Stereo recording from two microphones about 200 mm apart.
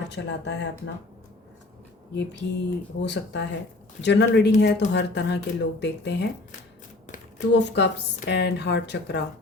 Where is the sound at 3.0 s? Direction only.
60° left (ahead or behind).